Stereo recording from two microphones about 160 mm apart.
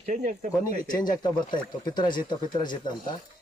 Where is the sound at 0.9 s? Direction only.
25° left (ahead or behind).